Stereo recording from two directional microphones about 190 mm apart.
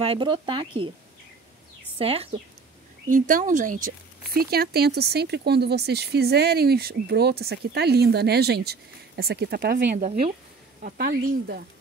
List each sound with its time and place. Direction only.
0.0 s speech: 25° right (ahead or behind)
2.0 s a woman's voice: 30° right (ahead or behind)
3.1 s speech: 45° right (ahead or behind)